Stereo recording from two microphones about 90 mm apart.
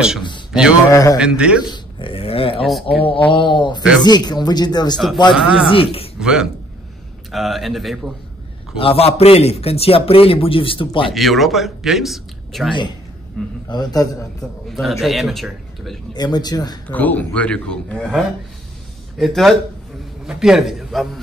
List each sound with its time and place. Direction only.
0.5 s a man's voice: 10° right (ahead or behind)
1.7 s dog: 75° left (ahead or behind); by 2.6 s 90° left
2.6 s speech: centre (ahead or behind)
3.3 s speech: 65° left (ahead or behind)
5.3 s speech: 5° right (ahead or behind)
5.7 s a man's voice: 90° left
6.1 s a man's voice: 10° right (ahead or behind)
8.7 s a man's voice: 90° left; by 11.1 s 75° left (ahead or behind)
11.1 s speech: centre (ahead or behind)
13.7 s speech: 50° left (ahead or behind)
14.7 s speech: centre (ahead or behind)
16.1 s speech: 50° left (ahead or behind)
16.8 s speech: 20° left (ahead or behind); by 21.1 s centre (ahead or behind)